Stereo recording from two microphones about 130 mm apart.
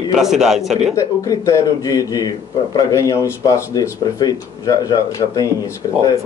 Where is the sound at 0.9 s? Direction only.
25° left (ahead or behind).